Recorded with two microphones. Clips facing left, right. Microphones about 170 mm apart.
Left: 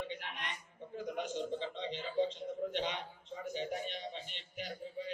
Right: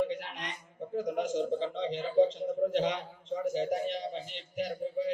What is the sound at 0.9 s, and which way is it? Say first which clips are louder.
A man's voice: right 8 dB; 90° right.